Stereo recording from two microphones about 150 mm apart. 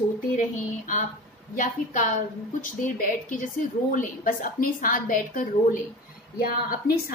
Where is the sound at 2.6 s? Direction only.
60° left (ahead or behind).